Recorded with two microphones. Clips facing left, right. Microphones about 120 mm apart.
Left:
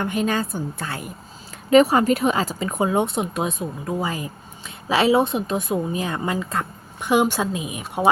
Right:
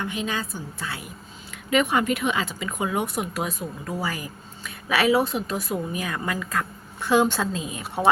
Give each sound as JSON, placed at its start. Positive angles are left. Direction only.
{"t": 0.0, "sound": "a woman's voice", "side_deg": 50}